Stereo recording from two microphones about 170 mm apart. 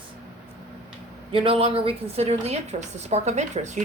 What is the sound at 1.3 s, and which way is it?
A woman's voice, 30° right (ahead or behind).